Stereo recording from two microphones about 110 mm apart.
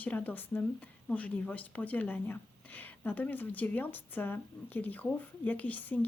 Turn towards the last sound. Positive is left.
turn(degrees=15)  # may be behind; listen again after turning